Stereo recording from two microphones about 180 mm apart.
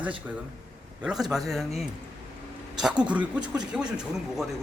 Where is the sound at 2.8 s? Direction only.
5° right (ahead or behind).